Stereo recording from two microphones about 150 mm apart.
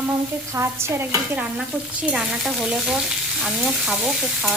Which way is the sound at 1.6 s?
5° right (ahead or behind).